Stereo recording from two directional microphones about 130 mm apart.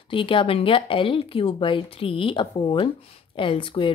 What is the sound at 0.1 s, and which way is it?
Speech, 40° left (ahead or behind).